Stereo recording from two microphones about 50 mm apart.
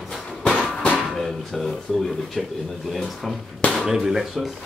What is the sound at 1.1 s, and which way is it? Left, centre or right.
Speech, centre.